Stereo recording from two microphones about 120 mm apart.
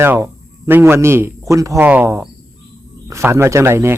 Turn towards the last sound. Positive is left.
turn(degrees=-20)  # may be behind; listen again after turning